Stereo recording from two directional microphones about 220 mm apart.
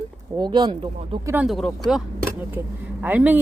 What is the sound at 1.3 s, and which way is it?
Speech, 5° right (ahead or behind).